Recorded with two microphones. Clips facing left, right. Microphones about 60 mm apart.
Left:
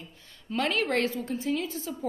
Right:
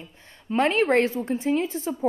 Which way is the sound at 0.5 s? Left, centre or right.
Right.